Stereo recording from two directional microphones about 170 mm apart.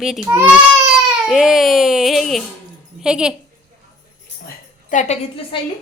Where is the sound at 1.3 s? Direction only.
Centre (ahead or behind).